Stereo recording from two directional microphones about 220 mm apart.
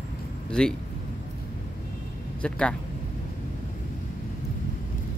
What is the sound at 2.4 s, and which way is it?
Speech, 5° left (ahead or behind).